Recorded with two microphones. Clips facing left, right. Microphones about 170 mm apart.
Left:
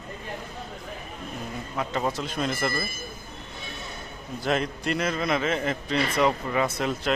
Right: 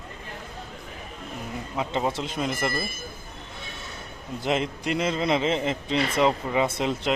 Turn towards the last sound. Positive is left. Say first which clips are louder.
# right 1 dB
turn(degrees=-20)  # may be behind; listen again after turning